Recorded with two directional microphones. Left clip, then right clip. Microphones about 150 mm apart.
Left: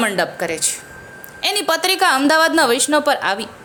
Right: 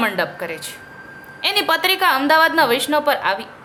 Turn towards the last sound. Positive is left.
turn(degrees=45)  # may be behind; listen again after turning